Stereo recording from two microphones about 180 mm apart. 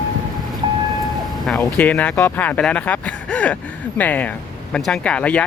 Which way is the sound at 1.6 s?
10° left (ahead or behind).